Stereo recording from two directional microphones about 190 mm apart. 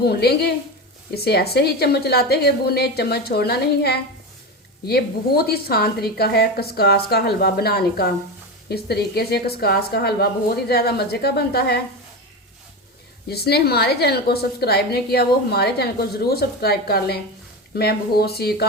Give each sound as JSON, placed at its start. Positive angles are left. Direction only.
{"t": 0.0, "sound": "a woman's voice", "side_deg": 55}
{"t": 13.2, "sound": "a woman's voice", "side_deg": 55}